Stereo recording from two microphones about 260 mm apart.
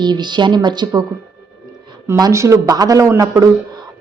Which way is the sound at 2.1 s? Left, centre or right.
Centre.